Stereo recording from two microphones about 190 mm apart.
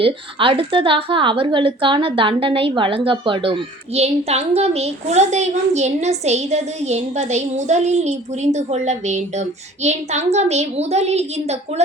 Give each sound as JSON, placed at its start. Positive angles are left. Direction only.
{"t": 0.0, "sound": "a woman's voice", "side_deg": -30}